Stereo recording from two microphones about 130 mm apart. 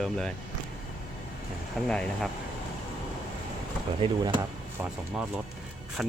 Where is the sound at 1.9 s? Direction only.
5° left (ahead or behind).